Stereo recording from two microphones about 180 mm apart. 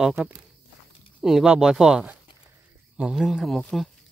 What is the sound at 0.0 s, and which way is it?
Speech, 10° right (ahead or behind).